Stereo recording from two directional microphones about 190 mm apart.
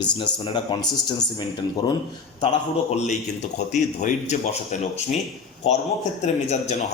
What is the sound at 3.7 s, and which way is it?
Speech, 40° left (ahead or behind).